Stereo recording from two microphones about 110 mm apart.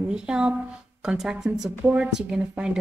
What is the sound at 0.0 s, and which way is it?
A woman's voice, 10° right (ahead or behind).